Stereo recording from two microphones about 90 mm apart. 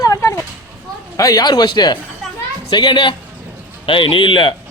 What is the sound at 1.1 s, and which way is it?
A man's voice, 45° left (ahead or behind).